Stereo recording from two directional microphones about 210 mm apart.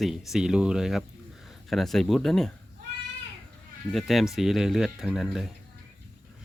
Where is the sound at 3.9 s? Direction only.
Centre (ahead or behind).